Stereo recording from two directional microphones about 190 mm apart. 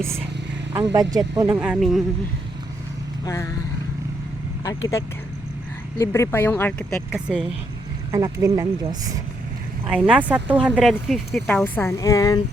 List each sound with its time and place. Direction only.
0.7 s speech: 20° right (ahead or behind)
1.4 s speech: 10° right (ahead or behind)
3.2 s speech: 15° left (ahead or behind)
4.6 s speech: 15° left (ahead or behind); by 7.4 s centre (ahead or behind)
8.1 s speech: 15° right (ahead or behind)
9.8 s speech: 5° right (ahead or behind); by 12.4 s 20° left (ahead or behind)